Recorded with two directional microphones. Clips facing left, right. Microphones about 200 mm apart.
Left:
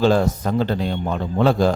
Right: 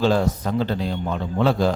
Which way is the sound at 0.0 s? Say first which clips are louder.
Left 3 dB; 50° left (ahead or behind).